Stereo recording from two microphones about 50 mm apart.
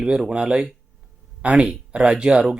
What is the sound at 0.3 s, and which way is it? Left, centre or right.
Speech, right.